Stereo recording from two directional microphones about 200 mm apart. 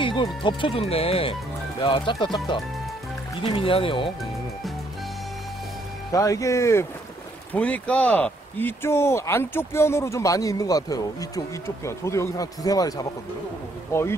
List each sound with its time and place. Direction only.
0.0 s speech: 25° left (ahead or behind)
6.1 s speech: 15° left (ahead or behind)